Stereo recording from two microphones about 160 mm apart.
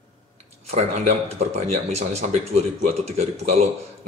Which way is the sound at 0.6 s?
45° right (ahead or behind).